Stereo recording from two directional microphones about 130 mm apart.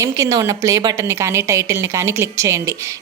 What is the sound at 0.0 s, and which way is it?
A woman's voice, 25° right (ahead or behind).